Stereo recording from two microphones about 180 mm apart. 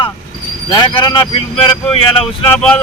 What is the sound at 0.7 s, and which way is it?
Speech, 25° left (ahead or behind).